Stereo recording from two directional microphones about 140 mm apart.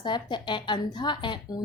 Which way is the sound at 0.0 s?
35° left (ahead or behind).